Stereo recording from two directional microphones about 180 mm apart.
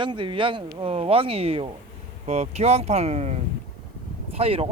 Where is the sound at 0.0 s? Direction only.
25° right (ahead or behind).